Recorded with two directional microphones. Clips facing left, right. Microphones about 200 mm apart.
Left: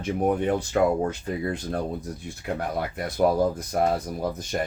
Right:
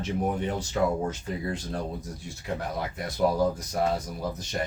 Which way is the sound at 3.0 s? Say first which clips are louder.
Left 3 dB; 55° left (ahead or behind).